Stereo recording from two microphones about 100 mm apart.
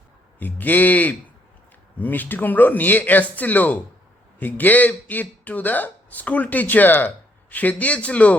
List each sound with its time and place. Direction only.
0.3 s a man's voice: 15° left (ahead or behind)